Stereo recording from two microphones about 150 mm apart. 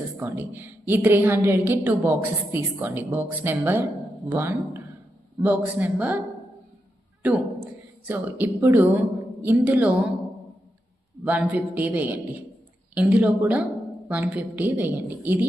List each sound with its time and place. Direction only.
0.2 s a woman's voice: 15° right (ahead or behind)
7.2 s a man's voice: 10° right (ahead or behind)
11.3 s a woman's voice: 10° right (ahead or behind)